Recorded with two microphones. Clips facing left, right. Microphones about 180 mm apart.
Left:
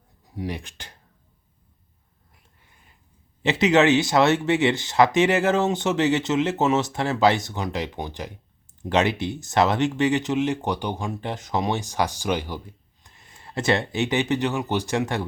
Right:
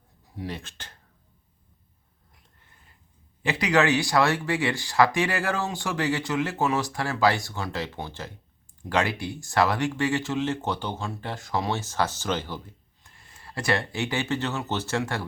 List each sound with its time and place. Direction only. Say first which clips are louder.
0.3 s speech: left 4 dB; 15° left (ahead or behind)
3.4 s speech: left 5 dB; 20° left (ahead or behind)